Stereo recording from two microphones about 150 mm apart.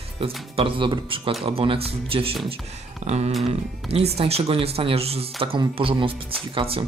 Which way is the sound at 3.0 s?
50° right (ahead or behind).